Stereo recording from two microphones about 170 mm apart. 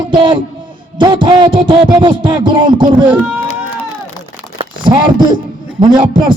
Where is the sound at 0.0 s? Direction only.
30° right (ahead or behind).